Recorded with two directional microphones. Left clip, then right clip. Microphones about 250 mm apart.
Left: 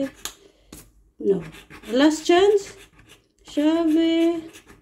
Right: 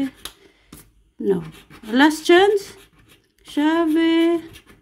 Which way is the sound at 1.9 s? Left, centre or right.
Right.